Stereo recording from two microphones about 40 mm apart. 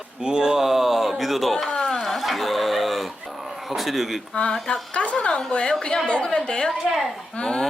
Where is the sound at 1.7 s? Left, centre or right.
Centre.